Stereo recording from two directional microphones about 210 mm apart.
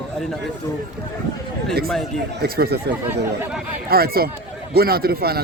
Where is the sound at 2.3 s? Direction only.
45° right (ahead or behind).